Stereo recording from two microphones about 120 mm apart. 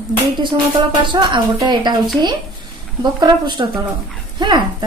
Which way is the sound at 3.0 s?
35° right (ahead or behind).